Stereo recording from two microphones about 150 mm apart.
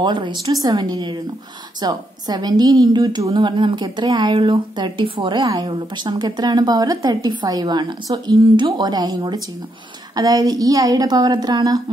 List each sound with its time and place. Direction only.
0.0 s speech: 30° right (ahead or behind)